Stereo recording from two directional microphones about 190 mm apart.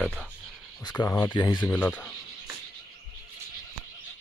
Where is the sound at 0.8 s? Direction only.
20° left (ahead or behind).